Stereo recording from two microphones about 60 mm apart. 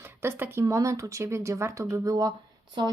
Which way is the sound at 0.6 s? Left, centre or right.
Right.